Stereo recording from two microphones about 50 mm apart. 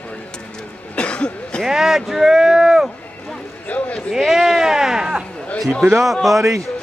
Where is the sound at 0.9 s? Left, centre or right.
Left.